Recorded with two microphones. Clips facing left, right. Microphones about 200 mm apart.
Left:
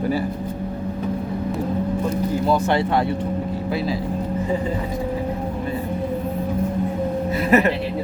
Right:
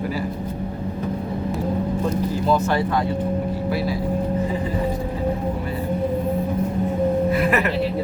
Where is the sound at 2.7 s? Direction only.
25° left (ahead or behind).